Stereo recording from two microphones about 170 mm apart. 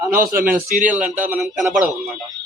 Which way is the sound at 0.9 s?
10° right (ahead or behind).